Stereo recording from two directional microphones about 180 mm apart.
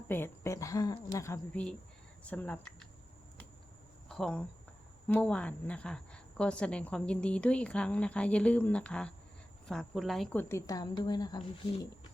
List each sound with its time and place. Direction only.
0.1 s a woman's voice: 15° left (ahead or behind)
4.1 s a woman's voice: 5° left (ahead or behind)
10.5 s speech: 20° left (ahead or behind)